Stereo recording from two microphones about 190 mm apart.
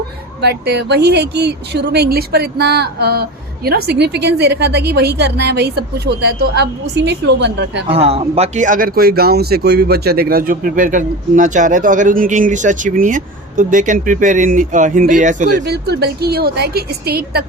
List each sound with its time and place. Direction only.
0.4 s speech: 60° right (ahead or behind)
7.9 s speech: 30° right (ahead or behind)
15.6 s speech: 60° right (ahead or behind)